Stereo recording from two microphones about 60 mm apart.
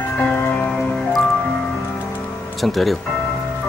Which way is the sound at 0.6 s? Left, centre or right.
Centre.